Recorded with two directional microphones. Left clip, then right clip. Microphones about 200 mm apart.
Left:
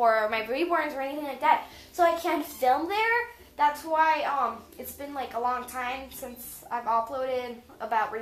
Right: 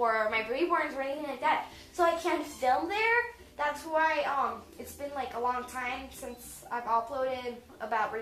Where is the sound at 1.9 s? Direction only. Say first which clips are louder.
Left 4 dB; 50° left (ahead or behind).